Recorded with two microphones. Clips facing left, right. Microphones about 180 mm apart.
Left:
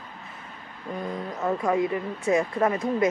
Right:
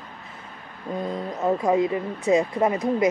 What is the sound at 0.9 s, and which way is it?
Speech, 15° right (ahead or behind).